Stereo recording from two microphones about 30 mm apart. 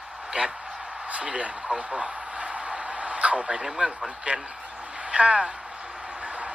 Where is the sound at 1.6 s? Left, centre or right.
Centre.